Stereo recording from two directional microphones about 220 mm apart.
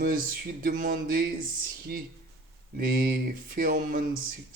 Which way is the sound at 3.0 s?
40° right (ahead or behind).